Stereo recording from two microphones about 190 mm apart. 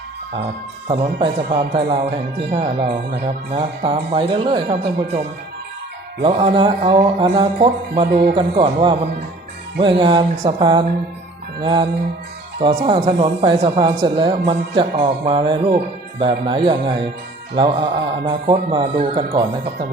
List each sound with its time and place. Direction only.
0.9 s speech: 25° right (ahead or behind)
6.2 s speech: 25° right (ahead or behind)